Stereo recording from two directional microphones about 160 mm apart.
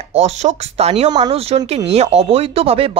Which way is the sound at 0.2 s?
45° right (ahead or behind).